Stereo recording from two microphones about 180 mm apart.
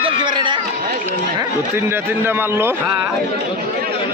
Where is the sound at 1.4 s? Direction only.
15° right (ahead or behind).